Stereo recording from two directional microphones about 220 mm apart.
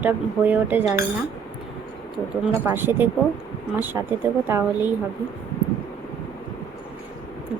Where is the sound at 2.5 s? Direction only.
10° right (ahead or behind).